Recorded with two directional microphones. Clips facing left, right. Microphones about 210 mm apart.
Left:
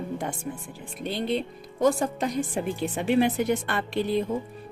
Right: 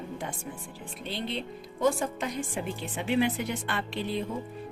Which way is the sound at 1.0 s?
50° left (ahead or behind).